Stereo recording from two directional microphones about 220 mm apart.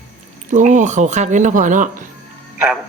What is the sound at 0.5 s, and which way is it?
Speech, 35° right (ahead or behind).